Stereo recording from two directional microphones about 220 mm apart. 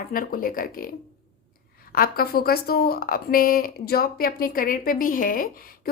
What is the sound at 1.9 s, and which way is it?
A woman's voice, 40° left (ahead or behind).